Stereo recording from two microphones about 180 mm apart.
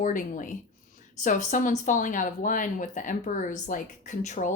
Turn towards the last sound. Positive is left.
turn(degrees=45)  # may be behind; listen again after turning